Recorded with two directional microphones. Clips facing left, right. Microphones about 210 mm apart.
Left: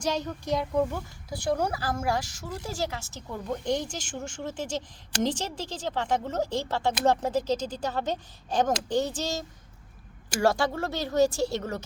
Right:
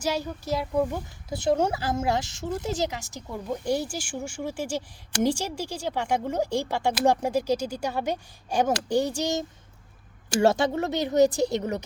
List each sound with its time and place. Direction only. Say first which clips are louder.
0.0 s speech: right 1 dB; 10° right (ahead or behind)
1.3 s speech: right 4 dB; 25° right (ahead or behind)